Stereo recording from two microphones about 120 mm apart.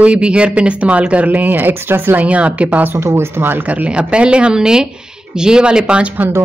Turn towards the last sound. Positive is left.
turn(degrees=-15)  # may be behind; listen again after turning